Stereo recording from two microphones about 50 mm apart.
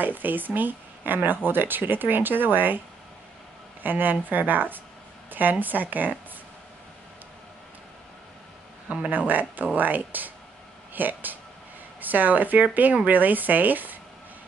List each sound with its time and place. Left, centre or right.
0.0 s speech: right
3.8 s speech: right
8.8 s speech: right